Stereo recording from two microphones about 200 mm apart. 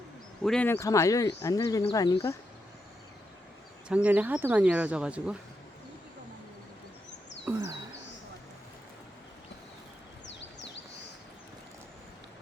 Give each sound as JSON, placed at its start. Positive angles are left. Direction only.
{"t": 0.4, "sound": "speech", "side_deg": 5}
{"t": 3.8, "sound": "speech", "side_deg": -5}
{"t": 7.5, "sound": "speech", "side_deg": -10}